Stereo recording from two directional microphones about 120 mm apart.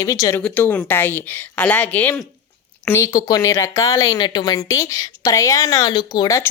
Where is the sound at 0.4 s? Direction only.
15° left (ahead or behind).